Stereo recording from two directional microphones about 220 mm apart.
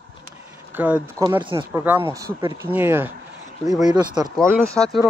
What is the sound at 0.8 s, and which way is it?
Speech, 5° right (ahead or behind).